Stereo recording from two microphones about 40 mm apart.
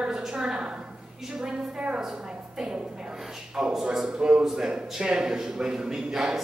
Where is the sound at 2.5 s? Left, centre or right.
Centre.